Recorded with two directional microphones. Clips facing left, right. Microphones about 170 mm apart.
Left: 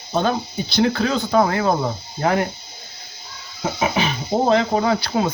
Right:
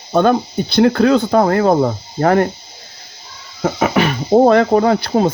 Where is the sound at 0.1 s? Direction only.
55° right (ahead or behind).